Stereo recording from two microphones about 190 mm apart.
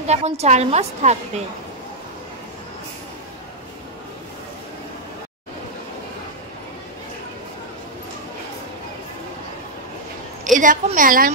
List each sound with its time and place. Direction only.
0.0 s a woman's voice: 35° right (ahead or behind)
10.5 s a woman's voice: 45° right (ahead or behind)